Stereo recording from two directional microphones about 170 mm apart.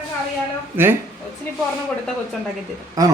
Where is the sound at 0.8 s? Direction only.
10° right (ahead or behind).